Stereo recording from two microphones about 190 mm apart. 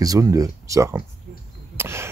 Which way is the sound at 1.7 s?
15° right (ahead or behind).